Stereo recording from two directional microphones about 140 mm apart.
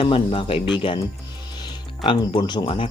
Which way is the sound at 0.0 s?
40° left (ahead or behind).